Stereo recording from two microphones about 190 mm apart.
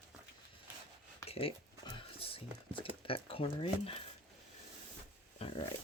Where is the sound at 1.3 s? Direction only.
30° left (ahead or behind).